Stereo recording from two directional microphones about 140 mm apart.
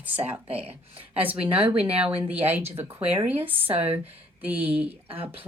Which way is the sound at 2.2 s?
10° right (ahead or behind).